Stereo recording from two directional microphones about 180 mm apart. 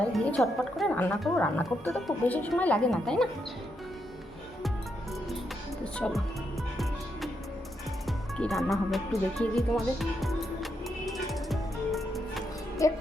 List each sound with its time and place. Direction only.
0.1 s a woman's voice: 5° left (ahead or behind)
5.8 s a woman's voice: 5° left (ahead or behind)
8.0 s music: centre (ahead or behind)
12.8 s speech: 15° left (ahead or behind)